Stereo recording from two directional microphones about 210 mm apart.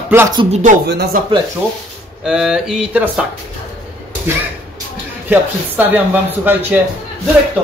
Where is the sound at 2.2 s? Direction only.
Centre (ahead or behind).